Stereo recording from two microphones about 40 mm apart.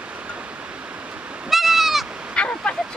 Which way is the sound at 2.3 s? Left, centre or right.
Left.